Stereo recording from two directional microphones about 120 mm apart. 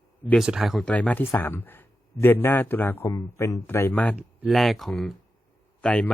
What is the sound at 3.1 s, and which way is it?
Speech, 25° left (ahead or behind).